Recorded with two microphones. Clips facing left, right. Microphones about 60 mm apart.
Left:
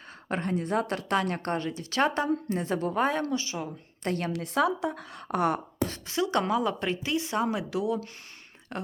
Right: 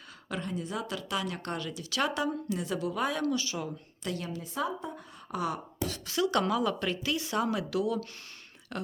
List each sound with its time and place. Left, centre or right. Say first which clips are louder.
0.3 s a woman's voice: left 6 dB; left
4.0 s a woman's voice: left 6 dB; left
4.3 s a woman's voice: left 9 dB; left
5.8 s a woman's voice: even; left